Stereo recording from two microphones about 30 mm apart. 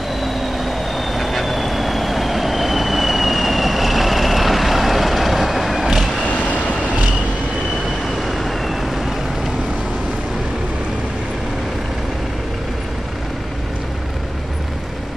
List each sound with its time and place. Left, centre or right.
0.2 s vehicle: centre
6.2 s vehicle: left
8.2 s vehicle: centre